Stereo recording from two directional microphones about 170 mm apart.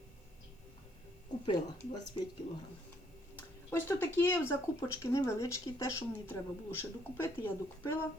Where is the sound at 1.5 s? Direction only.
25° left (ahead or behind).